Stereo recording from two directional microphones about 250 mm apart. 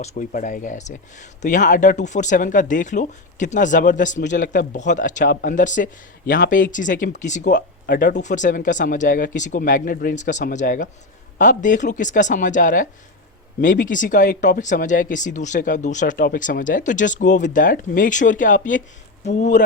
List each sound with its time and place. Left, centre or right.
0.0 s speech: left
8.2 s speech: left